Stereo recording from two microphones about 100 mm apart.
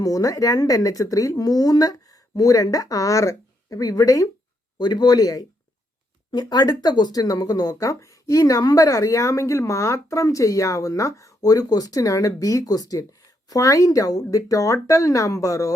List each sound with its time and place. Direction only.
0.0 s speech: 35° left (ahead or behind)